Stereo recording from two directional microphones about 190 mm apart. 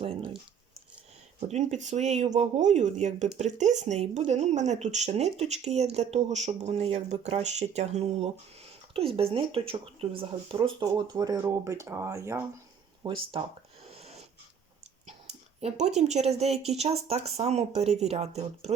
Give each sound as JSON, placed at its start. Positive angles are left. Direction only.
{"t": 1.4, "sound": "speech", "side_deg": -40}
{"t": 13.0, "sound": "speech", "side_deg": -25}
{"t": 13.9, "sound": "snort", "side_deg": -35}
{"t": 15.0, "sound": "speech", "side_deg": -35}